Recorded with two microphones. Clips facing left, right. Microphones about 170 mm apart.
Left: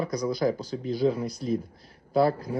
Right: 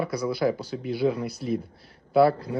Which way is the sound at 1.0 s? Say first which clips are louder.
Even; 35° left (ahead or behind).